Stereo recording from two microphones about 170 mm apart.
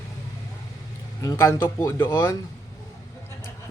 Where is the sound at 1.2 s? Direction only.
20° left (ahead or behind).